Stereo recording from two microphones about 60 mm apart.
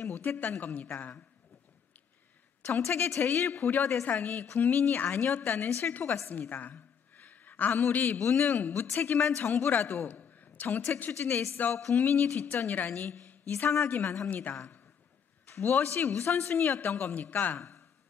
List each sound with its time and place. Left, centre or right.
0.0 s a sound: left
0.4 s a man's voice: left
3.2 s a man's voice: left
6.5 s a sound: left
7.9 s a man's voice: left
8.2 s a man's voice: left
8.5 s a man's voice: left
11.0 s a man's voice: left
11.5 s a man's voice: left
14.5 s a man's voice: left